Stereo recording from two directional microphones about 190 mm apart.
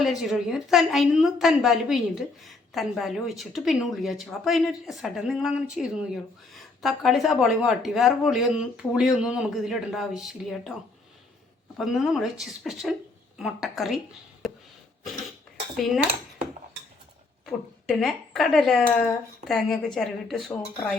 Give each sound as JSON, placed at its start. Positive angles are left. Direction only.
{"t": 0.0, "sound": "a woman's voice", "side_deg": 0}
{"t": 11.8, "sound": "a woman's voice", "side_deg": 0}
{"t": 14.4, "sound": "a sound", "side_deg": 0}
{"t": 17.4, "sound": "a woman's voice", "side_deg": 0}